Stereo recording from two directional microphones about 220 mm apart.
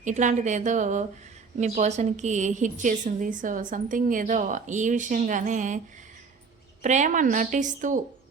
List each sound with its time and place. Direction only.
0.0 s a woman's voice: 35° right (ahead or behind)
6.8 s a woman's voice: 35° right (ahead or behind)